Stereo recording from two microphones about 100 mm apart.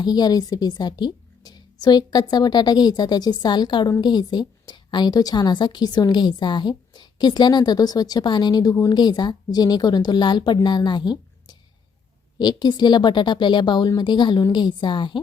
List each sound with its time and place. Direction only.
0.0 s a woman's voice: 45° left (ahead or behind)
12.4 s a woman's voice: 45° left (ahead or behind)